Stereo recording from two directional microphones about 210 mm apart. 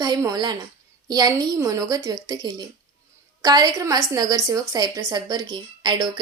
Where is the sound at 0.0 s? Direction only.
15° right (ahead or behind).